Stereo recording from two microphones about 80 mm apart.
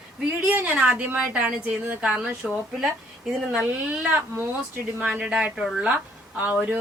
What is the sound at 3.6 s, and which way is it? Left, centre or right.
Speech, centre.